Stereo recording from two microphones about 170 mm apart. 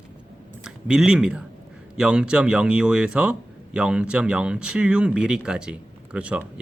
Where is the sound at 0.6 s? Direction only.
5° right (ahead or behind).